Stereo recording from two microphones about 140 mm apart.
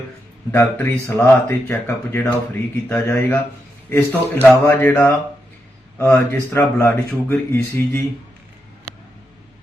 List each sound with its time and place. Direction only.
0.5 s speech: 20° left (ahead or behind)